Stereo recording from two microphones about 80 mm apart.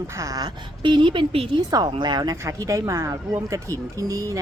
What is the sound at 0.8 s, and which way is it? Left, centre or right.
Speech, right.